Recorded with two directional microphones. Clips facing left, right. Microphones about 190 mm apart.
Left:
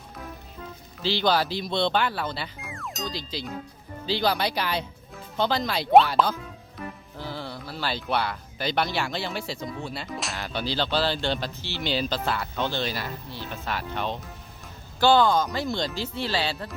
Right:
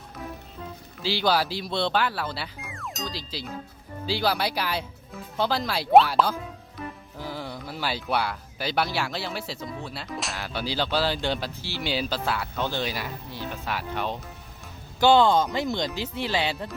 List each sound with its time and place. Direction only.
1.0 s speech: 10° right (ahead or behind)
15.0 s speech: 25° right (ahead or behind)